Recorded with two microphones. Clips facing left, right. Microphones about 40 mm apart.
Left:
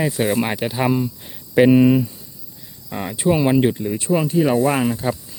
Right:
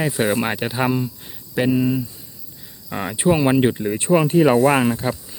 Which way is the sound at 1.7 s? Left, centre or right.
Left.